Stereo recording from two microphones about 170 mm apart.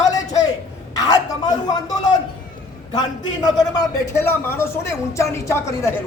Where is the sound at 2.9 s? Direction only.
25° left (ahead or behind).